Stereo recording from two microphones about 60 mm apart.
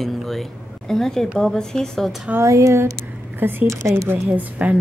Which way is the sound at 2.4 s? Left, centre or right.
Right.